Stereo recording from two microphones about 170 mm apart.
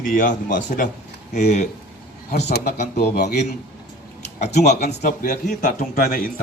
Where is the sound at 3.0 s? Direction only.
75° left (ahead or behind).